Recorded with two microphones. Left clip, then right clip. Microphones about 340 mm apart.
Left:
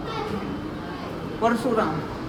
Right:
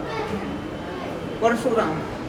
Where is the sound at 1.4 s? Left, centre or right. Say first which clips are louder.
Right 2 dB; centre.